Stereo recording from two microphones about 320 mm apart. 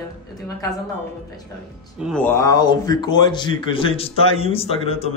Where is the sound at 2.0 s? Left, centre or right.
Centre.